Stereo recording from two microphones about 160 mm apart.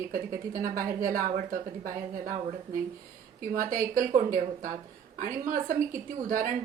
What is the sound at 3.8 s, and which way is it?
Speech, 60° right (ahead or behind).